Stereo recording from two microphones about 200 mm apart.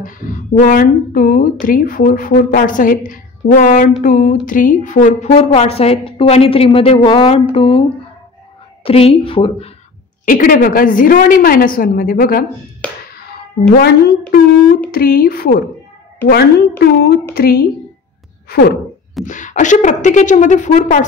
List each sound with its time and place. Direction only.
0.6 s a woman's voice: 45° left (ahead or behind); by 7.8 s 25° left (ahead or behind)
8.8 s a woman's voice: 30° left (ahead or behind)
10.2 s speech: 45° left (ahead or behind)
13.7 s speech: 50° left (ahead or behind)
19.2 s a woman's voice: 40° left (ahead or behind)